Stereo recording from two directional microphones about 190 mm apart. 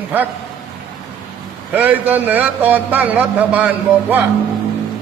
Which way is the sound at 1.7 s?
10° right (ahead or behind).